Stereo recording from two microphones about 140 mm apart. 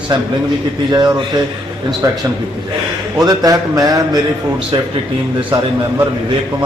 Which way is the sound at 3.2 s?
25° right (ahead or behind).